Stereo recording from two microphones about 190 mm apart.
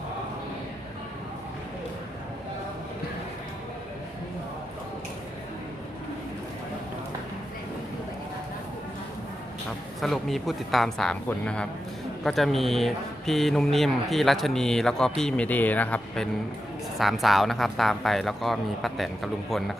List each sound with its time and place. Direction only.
10.0 s speech: centre (ahead or behind)